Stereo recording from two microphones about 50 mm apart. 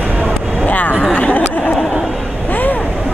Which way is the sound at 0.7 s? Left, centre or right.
Left.